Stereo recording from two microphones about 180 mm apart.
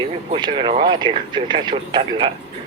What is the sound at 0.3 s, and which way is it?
Speech, 25° right (ahead or behind).